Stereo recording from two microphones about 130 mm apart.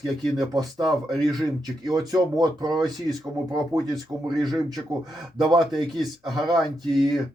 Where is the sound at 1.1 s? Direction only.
Centre (ahead or behind).